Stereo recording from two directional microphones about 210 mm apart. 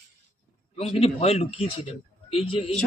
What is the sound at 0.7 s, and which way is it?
A man's voice, 30° left (ahead or behind).